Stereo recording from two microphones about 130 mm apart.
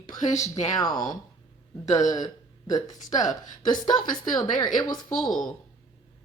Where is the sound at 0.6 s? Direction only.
30° left (ahead or behind).